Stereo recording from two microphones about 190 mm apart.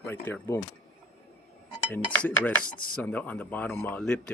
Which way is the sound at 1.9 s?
10° left (ahead or behind).